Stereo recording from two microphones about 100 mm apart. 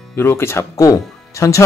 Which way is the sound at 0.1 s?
25° left (ahead or behind).